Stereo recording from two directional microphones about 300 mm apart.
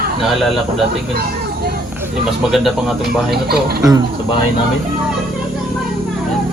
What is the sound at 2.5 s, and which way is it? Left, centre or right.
Speech, centre.